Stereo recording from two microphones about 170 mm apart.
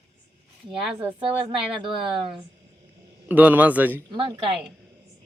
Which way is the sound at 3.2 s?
10° right (ahead or behind).